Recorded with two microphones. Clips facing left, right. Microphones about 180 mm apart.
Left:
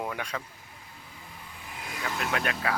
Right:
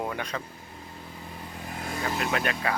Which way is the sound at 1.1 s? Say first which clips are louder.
Right 7 dB; 45° right (ahead or behind).